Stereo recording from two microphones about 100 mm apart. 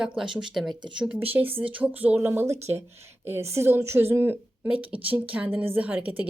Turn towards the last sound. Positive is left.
turn(degrees=-15)  # may be behind; listen again after turning